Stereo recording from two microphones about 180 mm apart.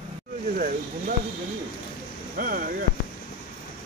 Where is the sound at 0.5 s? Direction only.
50° right (ahead or behind).